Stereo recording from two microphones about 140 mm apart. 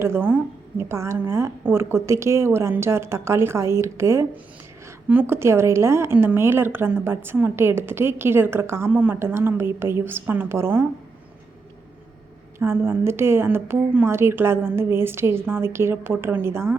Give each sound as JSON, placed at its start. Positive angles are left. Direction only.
{"t": 0.0, "sound": "a woman's voice", "side_deg": -15}
{"t": 12.5, "sound": "a woman's voice", "side_deg": -15}